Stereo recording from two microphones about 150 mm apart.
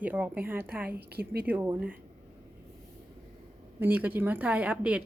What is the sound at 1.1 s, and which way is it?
Speech, 90° right.